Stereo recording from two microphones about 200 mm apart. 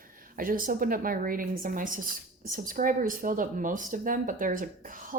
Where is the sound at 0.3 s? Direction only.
45° right (ahead or behind).